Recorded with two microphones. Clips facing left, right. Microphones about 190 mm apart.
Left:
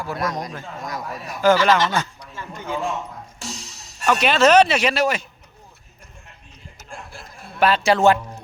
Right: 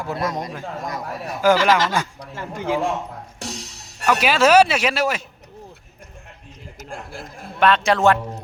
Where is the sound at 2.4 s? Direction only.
85° right.